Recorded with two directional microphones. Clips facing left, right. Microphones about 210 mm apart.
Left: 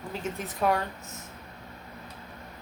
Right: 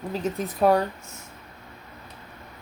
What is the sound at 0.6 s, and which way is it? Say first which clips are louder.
Speech: right 7 dB; 35° right (ahead or behind).